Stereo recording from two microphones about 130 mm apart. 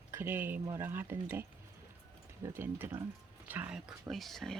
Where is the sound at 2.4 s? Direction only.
15° right (ahead or behind).